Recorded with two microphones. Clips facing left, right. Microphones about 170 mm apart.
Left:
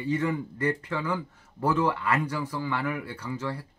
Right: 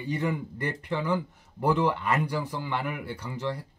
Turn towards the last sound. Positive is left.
turn(degrees=-15)  # may be behind; listen again after turning